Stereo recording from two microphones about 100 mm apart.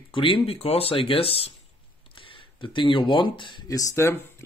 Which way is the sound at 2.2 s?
60° left (ahead or behind).